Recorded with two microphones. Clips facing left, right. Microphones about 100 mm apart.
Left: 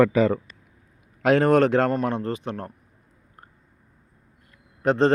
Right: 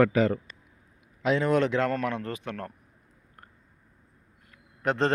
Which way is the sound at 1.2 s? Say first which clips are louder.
Left 6 dB; 55° left (ahead or behind).